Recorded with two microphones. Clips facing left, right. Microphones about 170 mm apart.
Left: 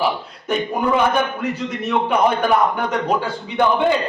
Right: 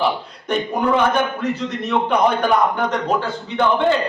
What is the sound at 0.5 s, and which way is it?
A man's voice, 5° left (ahead or behind).